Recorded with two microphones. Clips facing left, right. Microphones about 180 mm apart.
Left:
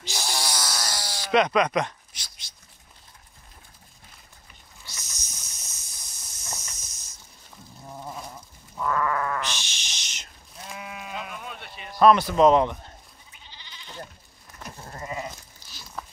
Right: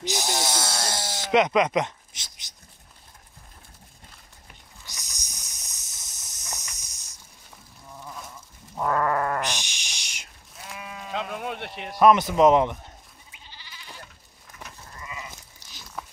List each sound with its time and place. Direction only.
0.0 s snake: 20° right (ahead or behind)
4.8 s hiss: 15° right (ahead or behind)
8.8 s goat: 45° right (ahead or behind)
9.4 s a sound: 15° right (ahead or behind)
10.7 s sheep: 15° left (ahead or behind)
11.1 s sheep: 70° right (ahead or behind)
12.0 s speech: 20° right (ahead or behind)
14.9 s sheep: 40° left (ahead or behind)